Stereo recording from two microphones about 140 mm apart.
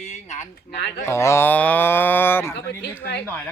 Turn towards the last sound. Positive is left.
turn(degrees=15)  # may be behind; listen again after turning